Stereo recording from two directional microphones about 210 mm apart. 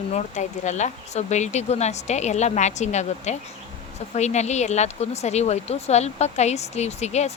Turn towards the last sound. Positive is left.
turn(degrees=30)  # may be behind; listen again after turning